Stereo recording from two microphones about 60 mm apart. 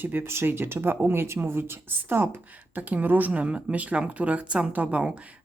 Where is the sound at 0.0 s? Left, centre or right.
Right.